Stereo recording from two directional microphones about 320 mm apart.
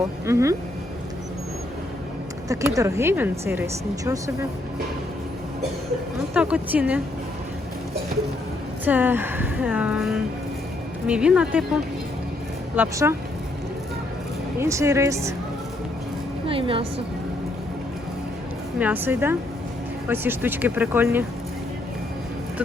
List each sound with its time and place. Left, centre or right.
0.3 s speech: centre
2.5 s speech: centre
6.3 s speech: centre
8.8 s speech: centre
14.6 s speech: centre
16.5 s a woman's voice: centre
18.8 s speech: centre